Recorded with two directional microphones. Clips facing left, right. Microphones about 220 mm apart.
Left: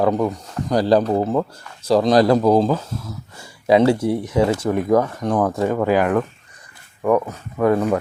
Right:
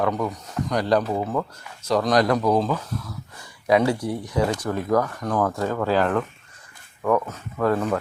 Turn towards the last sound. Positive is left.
turn(degrees=15)  # may be behind; listen again after turning